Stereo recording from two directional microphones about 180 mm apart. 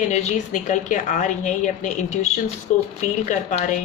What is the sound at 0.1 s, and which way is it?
A woman's voice, 40° left (ahead or behind).